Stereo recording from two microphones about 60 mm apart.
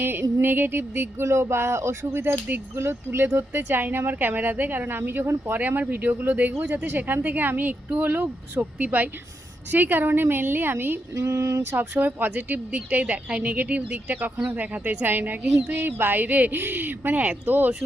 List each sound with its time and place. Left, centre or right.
0.0 s speech: right
5.5 s a woman's voice: right
11.9 s a woman's voice: right